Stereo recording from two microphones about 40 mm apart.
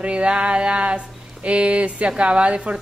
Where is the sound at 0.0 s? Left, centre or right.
Right.